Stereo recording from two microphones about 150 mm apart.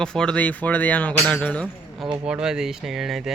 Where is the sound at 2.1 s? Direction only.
5° right (ahead or behind).